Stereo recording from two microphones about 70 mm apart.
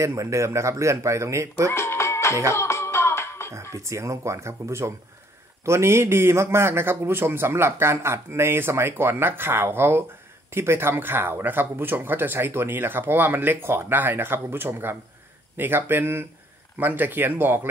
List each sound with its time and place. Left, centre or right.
0.0 s speech: right
1.7 s music: left
3.7 s speech: right